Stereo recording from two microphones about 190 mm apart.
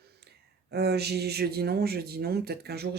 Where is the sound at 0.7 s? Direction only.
60° right (ahead or behind).